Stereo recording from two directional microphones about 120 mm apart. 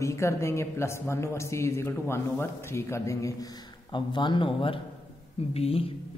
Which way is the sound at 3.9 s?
40° left (ahead or behind).